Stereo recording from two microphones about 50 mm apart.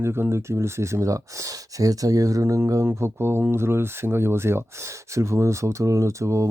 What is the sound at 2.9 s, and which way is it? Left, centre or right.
Speech, right.